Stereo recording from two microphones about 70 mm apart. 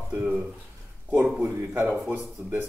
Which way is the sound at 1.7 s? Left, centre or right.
Right.